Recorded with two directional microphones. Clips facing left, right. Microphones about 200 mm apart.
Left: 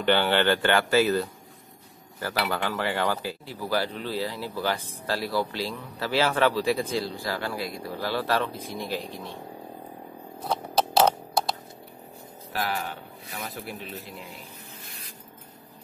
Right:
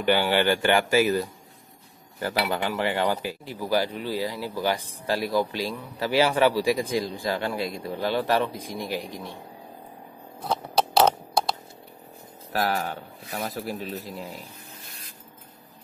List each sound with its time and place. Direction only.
0.0 s speech: 10° right (ahead or behind)
12.5 s a man's voice: 40° right (ahead or behind)